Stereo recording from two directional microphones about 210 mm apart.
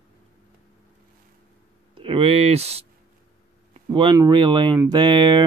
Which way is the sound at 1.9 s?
25° right (ahead or behind).